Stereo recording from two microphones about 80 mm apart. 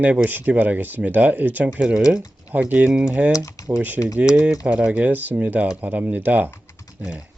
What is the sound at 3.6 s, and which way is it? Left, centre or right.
Typing, left.